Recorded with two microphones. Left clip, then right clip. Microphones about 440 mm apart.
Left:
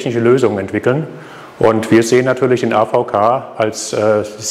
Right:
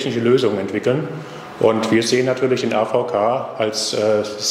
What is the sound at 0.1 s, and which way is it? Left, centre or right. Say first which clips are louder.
Speech: left 5 dB; left.